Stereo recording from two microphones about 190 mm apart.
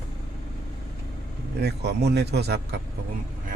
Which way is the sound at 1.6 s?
60° right (ahead or behind).